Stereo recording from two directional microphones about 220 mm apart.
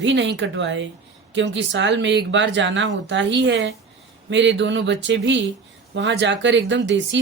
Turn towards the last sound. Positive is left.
turn(degrees=-55)  # may be behind; listen again after turning